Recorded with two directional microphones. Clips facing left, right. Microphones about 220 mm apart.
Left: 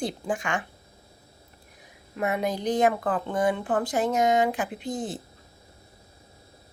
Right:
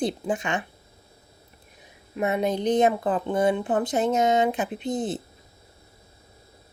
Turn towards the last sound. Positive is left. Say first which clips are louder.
# right 4 dB
turn(degrees=-20)  # may be behind; listen again after turning